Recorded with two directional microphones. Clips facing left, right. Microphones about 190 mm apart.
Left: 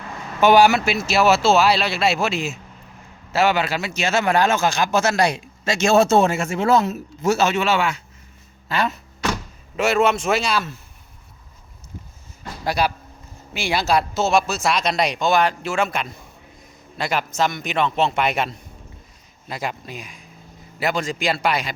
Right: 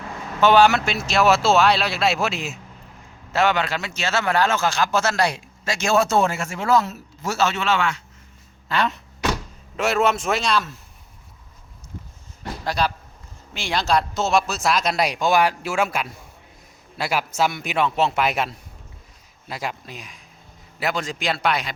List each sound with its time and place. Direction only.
0.3 s speech: 10° left (ahead or behind)
12.6 s a man's voice: 10° left (ahead or behind)